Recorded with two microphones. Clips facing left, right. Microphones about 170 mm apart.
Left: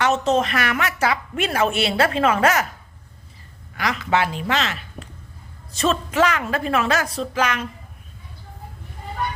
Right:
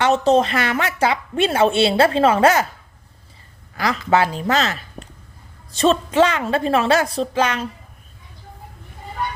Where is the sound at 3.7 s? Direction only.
35° right (ahead or behind).